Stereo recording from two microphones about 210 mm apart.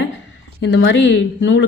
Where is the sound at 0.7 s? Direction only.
60° left (ahead or behind).